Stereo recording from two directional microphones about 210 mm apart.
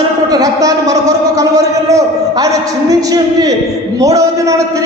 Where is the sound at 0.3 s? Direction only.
15° right (ahead or behind).